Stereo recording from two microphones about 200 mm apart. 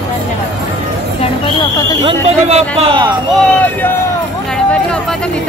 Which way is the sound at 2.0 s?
30° right (ahead or behind).